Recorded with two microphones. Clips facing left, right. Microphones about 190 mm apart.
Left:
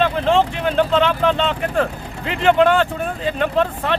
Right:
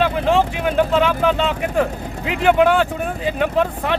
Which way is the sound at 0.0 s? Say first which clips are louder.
Even; 10° right (ahead or behind).